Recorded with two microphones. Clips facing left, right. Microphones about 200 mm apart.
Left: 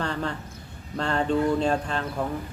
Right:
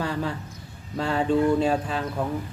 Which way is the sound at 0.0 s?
5° right (ahead or behind).